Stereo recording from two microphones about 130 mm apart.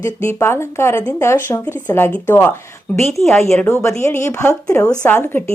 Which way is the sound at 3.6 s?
20° left (ahead or behind).